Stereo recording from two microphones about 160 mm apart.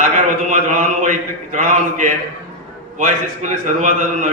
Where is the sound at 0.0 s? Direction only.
55° right (ahead or behind).